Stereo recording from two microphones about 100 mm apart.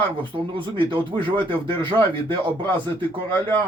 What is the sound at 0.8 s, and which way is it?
Speech, 55° right (ahead or behind).